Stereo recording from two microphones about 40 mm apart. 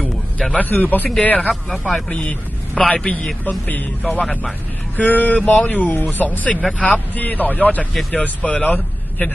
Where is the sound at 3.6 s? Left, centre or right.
Left.